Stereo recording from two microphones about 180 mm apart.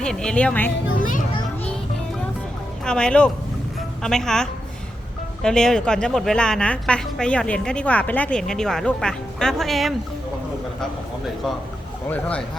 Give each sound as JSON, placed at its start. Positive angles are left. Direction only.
{"t": 0.0, "sound": "a woman's voice", "side_deg": 5}
{"t": 0.9, "sound": "children playing", "side_deg": 50}
{"t": 2.8, "sound": "a woman's voice", "side_deg": 5}
{"t": 12.0, "sound": "speech", "side_deg": 10}